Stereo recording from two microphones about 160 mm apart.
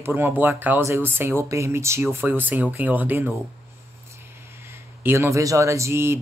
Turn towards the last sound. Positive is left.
turn(degrees=-15)  # may be behind; listen again after turning